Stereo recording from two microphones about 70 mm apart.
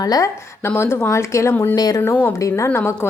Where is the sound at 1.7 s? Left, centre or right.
Left.